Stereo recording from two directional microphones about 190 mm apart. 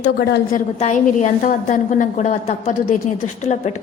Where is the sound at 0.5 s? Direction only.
40° left (ahead or behind).